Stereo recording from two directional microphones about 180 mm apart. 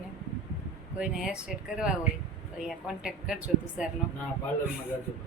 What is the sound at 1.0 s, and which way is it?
Speech, 5° right (ahead or behind).